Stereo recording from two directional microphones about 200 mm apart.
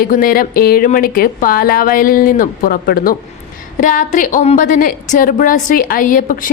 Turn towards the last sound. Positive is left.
turn(degrees=40)  # may be behind; listen again after turning